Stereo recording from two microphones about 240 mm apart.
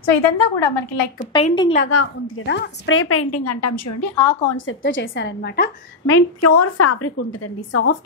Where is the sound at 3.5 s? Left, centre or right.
Left.